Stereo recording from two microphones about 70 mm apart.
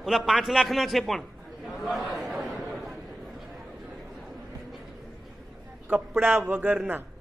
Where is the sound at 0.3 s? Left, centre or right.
Centre.